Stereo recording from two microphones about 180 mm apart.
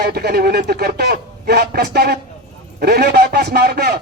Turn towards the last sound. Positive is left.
turn(degrees=-60)  # may be behind; listen again after turning